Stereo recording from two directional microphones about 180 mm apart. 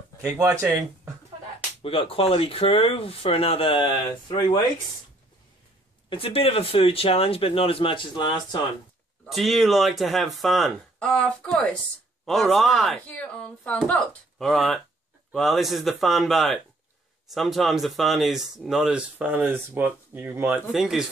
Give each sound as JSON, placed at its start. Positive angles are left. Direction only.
{"t": 0.2, "sound": "speech", "side_deg": -15}
{"t": 1.8, "sound": "speech", "side_deg": 30}
{"t": 6.0, "sound": "speech", "side_deg": 30}
{"t": 9.2, "sound": "speech", "side_deg": 0}